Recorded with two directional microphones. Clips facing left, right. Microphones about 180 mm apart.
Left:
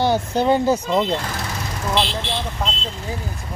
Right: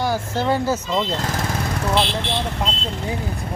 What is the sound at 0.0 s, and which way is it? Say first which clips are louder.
Speech: left 4 dB; 20° left (ahead or behind).